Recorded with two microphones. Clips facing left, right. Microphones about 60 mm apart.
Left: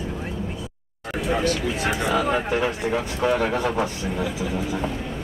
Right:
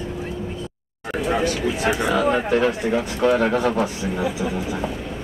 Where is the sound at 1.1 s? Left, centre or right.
Centre.